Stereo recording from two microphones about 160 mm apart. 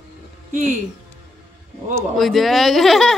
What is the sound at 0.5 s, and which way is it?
Speech, 50° right (ahead or behind).